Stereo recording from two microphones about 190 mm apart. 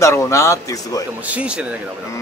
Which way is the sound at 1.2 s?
5° right (ahead or behind).